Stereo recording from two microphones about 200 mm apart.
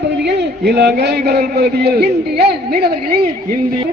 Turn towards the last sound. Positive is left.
turn(degrees=-50)  # may be behind; listen again after turning